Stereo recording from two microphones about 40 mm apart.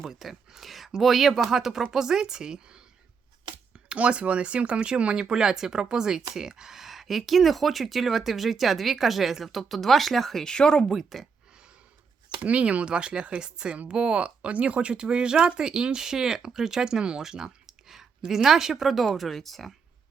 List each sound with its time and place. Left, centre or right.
0.0 s speech: centre
3.9 s speech: right
5.1 s speech: centre
10.4 s speech: centre
10.8 s speech: centre
12.4 s speech: right
14.2 s speech: right; by 19.7 s centre